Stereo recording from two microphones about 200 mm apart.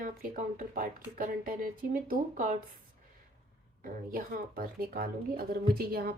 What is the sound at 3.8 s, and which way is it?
Speech, 45° right (ahead or behind).